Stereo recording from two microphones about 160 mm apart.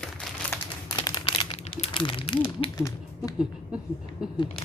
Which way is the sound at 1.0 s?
25° left (ahead or behind).